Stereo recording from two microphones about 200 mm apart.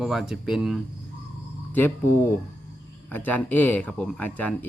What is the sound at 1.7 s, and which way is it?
Speech, 10° left (ahead or behind).